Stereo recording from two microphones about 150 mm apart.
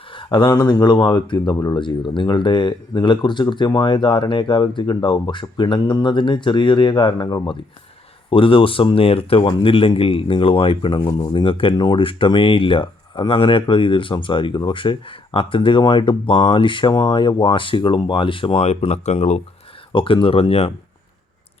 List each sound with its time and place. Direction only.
0.1 s speech: 30° left (ahead or behind); by 19.4 s 45° left (ahead or behind)
19.9 s speech: 35° left (ahead or behind)